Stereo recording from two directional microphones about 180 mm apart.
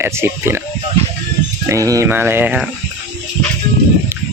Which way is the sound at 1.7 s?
20° right (ahead or behind).